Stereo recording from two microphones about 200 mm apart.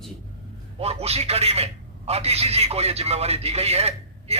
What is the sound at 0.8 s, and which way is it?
A man's voice, 30° right (ahead or behind).